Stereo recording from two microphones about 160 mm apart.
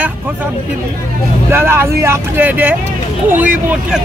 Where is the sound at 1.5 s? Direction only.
15° right (ahead or behind).